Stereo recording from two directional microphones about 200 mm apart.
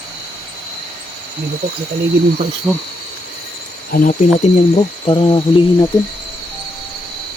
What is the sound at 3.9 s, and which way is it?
Speech, 40° left (ahead or behind).